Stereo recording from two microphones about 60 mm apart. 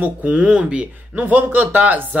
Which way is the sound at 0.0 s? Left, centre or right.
Right.